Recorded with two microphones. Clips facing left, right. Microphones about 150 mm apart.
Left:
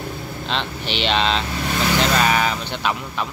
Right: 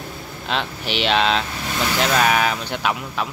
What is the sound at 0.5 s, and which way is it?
Speech, 5° right (ahead or behind).